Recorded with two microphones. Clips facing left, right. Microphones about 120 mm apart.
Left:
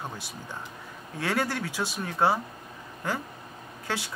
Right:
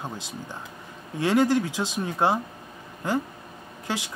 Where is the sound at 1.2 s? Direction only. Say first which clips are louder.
Right 8 dB; 15° right (ahead or behind).